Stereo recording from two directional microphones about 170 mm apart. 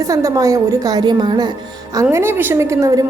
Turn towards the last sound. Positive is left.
turn(degrees=-20)  # may be behind; listen again after turning